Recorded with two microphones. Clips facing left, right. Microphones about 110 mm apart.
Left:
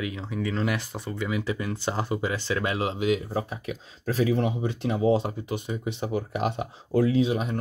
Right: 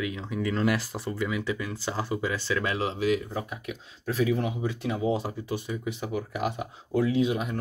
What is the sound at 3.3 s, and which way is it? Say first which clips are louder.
Speech: left 4 dB; 35° left (ahead or behind).